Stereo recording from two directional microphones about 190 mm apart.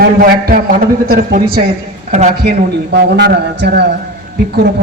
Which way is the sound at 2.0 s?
35° right (ahead or behind).